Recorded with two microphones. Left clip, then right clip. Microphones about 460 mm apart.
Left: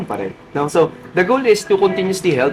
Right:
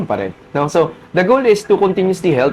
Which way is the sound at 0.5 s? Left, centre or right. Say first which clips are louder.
Right 1 dB; right.